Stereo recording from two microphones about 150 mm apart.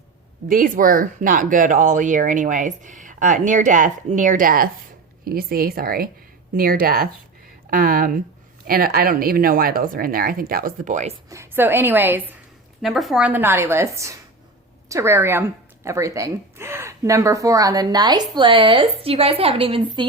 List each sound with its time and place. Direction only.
0.4 s speech: 65° right (ahead or behind)
5.2 s speech: 80° right
7.7 s speech: 70° right (ahead or behind)
11.3 s a woman's voice: 15° right (ahead or behind)
12.8 s a woman's voice: centre (ahead or behind); by 20.1 s 35° right (ahead or behind)